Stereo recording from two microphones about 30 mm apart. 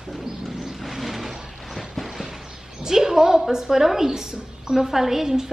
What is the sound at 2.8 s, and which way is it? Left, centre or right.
A woman's voice, centre.